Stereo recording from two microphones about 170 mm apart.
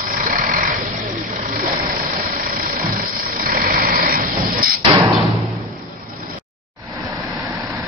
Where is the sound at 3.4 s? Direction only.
55° right (ahead or behind).